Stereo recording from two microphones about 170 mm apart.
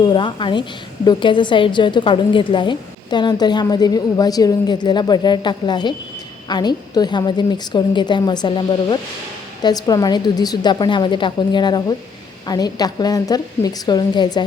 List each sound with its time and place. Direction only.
0.0 s a woman's voice: 30° left (ahead or behind)